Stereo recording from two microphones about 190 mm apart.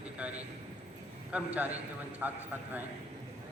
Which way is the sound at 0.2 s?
5° right (ahead or behind).